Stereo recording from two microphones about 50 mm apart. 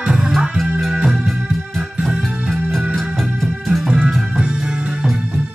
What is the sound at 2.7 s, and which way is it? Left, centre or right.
Music, centre.